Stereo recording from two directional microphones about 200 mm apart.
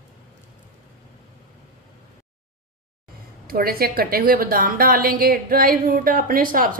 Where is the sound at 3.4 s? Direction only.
50° right (ahead or behind).